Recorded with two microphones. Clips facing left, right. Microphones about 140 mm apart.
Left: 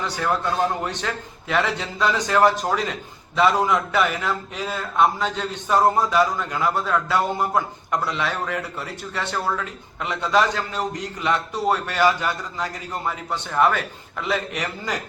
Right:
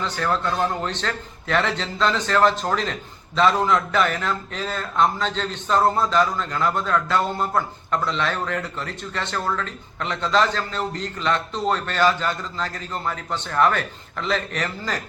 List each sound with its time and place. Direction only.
0.0 s a man's voice: 15° left (ahead or behind)